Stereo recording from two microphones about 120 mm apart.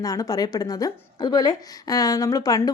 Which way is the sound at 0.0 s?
30° left (ahead or behind).